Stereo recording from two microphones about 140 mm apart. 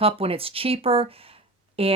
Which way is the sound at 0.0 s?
45° right (ahead or behind).